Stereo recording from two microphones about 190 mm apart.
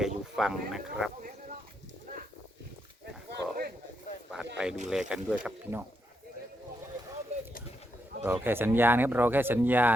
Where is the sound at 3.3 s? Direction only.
55° right (ahead or behind).